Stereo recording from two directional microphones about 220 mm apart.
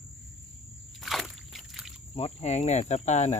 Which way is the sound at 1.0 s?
Centre (ahead or behind).